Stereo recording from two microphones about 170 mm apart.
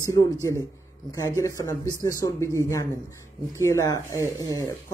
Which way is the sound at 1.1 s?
20° left (ahead or behind).